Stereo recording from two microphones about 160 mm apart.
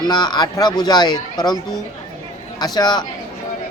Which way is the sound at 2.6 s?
25° left (ahead or behind).